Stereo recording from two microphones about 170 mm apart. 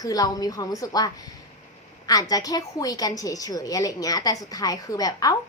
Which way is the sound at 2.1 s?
20° left (ahead or behind).